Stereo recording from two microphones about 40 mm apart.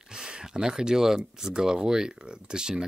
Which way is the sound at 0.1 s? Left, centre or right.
Right.